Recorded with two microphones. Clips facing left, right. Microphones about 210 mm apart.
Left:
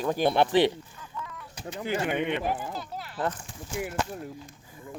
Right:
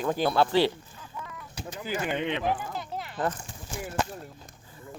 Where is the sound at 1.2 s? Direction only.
10° right (ahead or behind).